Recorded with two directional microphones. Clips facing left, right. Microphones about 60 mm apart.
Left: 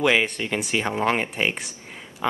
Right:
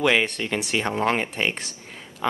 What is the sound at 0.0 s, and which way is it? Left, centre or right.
Speech, centre.